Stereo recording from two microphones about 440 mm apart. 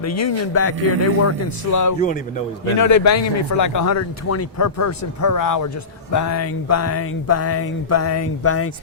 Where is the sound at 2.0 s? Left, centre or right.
Centre.